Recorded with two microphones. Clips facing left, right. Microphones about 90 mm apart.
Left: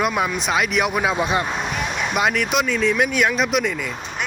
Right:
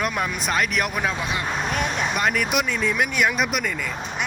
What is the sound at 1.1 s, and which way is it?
Speech, 20° left (ahead or behind).